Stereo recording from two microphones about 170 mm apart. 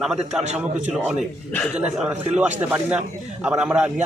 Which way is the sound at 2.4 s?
10° right (ahead or behind).